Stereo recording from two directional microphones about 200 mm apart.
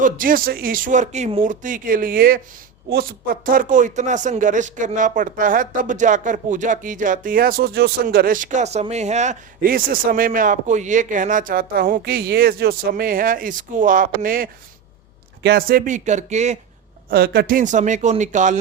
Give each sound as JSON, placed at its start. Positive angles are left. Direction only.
{"t": 0.0, "sound": "speech", "side_deg": -45}
{"t": 17.1, "sound": "speech", "side_deg": -50}